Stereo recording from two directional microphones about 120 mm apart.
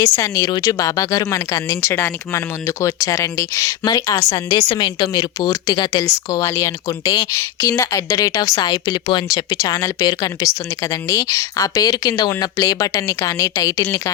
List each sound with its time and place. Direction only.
0.0 s speech: 25° left (ahead or behind)
7.0 s a woman's voice: 40° left (ahead or behind)
7.3 s a woman's voice: 25° left (ahead or behind)